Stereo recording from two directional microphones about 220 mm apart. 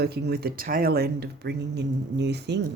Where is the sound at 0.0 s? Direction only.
45° right (ahead or behind).